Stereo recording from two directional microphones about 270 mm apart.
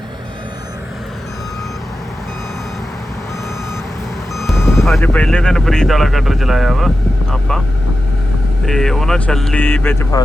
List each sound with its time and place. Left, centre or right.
4.4 s speech: centre
8.6 s speech: centre